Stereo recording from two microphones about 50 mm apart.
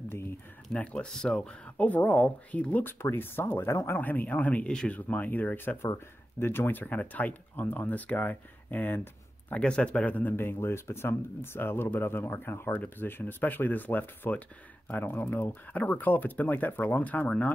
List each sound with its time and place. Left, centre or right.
0.1 s a sound: left
0.7 s speech: left
1.9 s speech: left
2.8 s speech: left
4.6 s speech: centre
4.9 s speech: left
9.5 s speech: left
10.3 s speech: left